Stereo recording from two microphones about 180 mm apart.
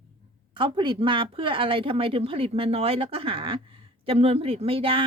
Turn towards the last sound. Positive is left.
turn(degrees=-30)  # may be behind; listen again after turning